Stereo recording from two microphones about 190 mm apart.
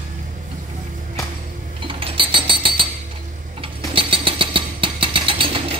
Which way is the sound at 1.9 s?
25° right (ahead or behind).